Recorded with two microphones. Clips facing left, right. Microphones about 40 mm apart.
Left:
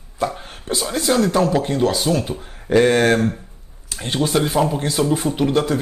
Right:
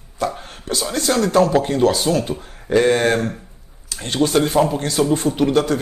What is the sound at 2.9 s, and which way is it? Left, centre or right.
Speech, left.